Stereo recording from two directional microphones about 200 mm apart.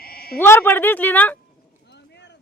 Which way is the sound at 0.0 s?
50° left (ahead or behind).